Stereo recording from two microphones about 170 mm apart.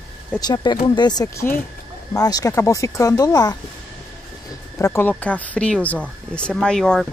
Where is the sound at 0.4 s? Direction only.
25° left (ahead or behind).